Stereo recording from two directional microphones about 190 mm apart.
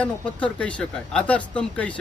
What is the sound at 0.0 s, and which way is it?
Speech, 5° left (ahead or behind).